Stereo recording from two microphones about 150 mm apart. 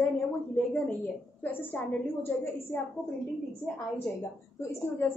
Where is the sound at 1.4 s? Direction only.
10° left (ahead or behind).